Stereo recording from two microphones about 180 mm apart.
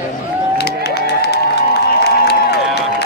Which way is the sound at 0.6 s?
65° left (ahead or behind).